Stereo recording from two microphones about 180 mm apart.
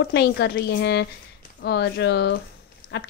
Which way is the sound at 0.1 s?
65° left (ahead or behind).